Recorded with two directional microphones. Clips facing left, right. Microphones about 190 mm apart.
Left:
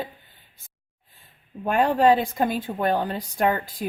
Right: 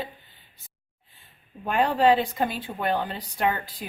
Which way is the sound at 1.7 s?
45° left (ahead or behind).